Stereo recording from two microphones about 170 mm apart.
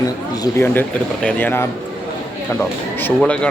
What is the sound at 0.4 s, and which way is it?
Speech, 10° left (ahead or behind).